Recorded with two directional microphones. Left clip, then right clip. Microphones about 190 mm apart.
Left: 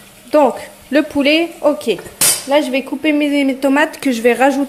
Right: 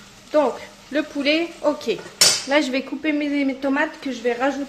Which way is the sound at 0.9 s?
20° left (ahead or behind).